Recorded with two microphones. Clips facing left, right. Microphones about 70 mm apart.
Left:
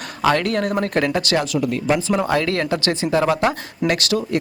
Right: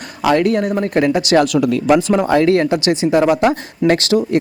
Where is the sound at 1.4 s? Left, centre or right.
Right.